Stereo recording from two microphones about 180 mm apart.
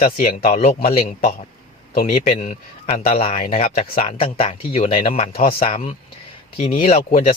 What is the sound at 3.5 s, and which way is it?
A man's voice, 35° left (ahead or behind).